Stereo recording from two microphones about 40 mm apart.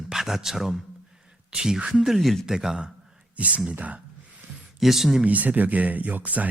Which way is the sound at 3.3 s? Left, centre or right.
Right.